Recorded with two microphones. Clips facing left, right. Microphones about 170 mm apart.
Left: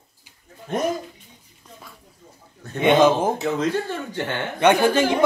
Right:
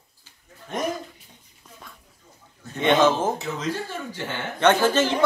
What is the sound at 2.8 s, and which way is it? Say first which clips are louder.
Speech: left 3 dB; 15° left (ahead or behind).